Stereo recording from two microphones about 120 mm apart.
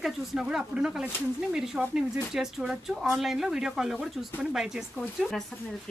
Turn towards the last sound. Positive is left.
turn(degrees=0)  # may be behind; listen again after turning